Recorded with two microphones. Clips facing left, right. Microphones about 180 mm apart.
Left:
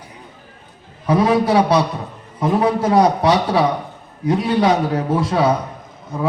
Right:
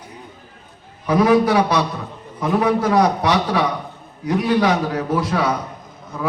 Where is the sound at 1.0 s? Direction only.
30° left (ahead or behind).